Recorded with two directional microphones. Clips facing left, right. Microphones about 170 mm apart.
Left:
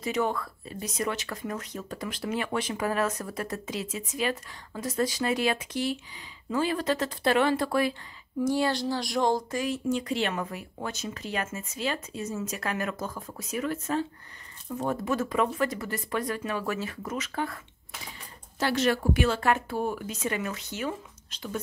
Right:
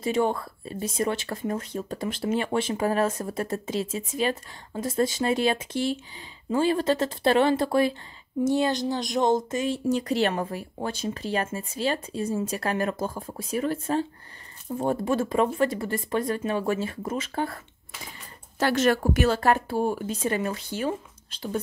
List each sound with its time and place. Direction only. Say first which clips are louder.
0.0 s speech: right 4 dB; 30° right (ahead or behind)
9.8 s speech: right 7 dB; 40° right (ahead or behind)
18.6 s speech: right 4 dB; 50° right (ahead or behind); by 21.5 s 30° right (ahead or behind)